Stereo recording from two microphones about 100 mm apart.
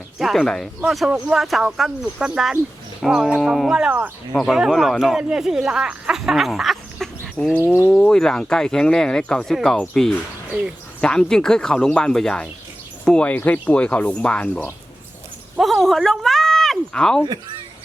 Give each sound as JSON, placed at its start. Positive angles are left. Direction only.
{"t": 0.2, "sound": "speech", "side_deg": 0}
{"t": 7.5, "sound": "speech", "side_deg": 25}
{"t": 7.9, "sound": "speech", "side_deg": 10}
{"t": 15.5, "sound": "speech", "side_deg": 0}